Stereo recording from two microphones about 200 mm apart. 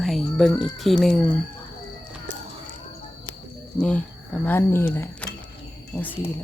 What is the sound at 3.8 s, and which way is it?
Speech, 5° left (ahead or behind).